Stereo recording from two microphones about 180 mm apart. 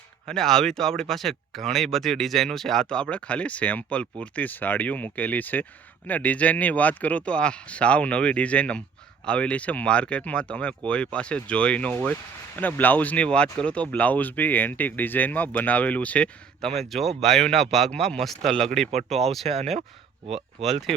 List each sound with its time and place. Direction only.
0.3 s speech: centre (ahead or behind)
18.9 s speech: 35° right (ahead or behind)
19.2 s speech: centre (ahead or behind)
19.5 s speech: 35° right (ahead or behind)
20.3 s speech: centre (ahead or behind)